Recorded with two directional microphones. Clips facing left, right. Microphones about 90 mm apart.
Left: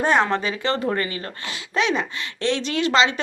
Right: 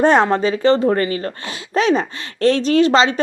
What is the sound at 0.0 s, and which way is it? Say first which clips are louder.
Speech: right 6 dB; 40° right (ahead or behind).